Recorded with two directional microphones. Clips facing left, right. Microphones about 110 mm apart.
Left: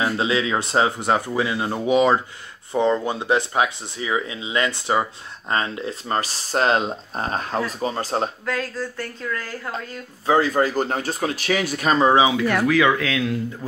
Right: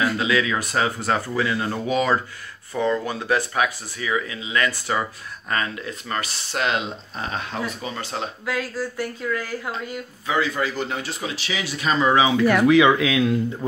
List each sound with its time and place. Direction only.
0.0 s speech: 25° left (ahead or behind)
8.5 s speech: 10° right (ahead or behind)
10.2 s speech: 40° left (ahead or behind)
12.6 s speech: 20° right (ahead or behind)